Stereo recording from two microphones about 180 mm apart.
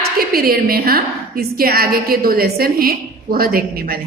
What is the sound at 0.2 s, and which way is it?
A woman's voice, 55° right (ahead or behind).